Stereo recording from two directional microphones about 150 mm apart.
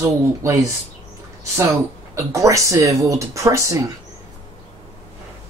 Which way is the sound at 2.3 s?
20° right (ahead or behind).